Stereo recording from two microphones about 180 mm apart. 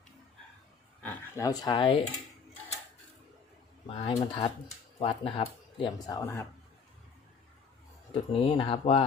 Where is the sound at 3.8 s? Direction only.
30° left (ahead or behind).